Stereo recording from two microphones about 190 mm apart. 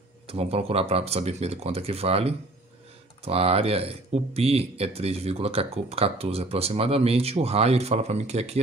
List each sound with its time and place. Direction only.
0.3 s speech: 30° right (ahead or behind)